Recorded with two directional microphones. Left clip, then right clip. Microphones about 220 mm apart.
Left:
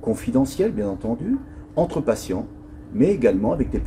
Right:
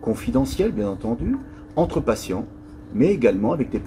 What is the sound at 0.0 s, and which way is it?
Speech, 10° right (ahead or behind).